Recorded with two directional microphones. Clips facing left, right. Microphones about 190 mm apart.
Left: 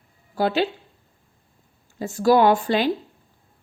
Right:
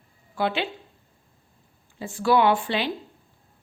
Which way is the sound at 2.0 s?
40° left (ahead or behind).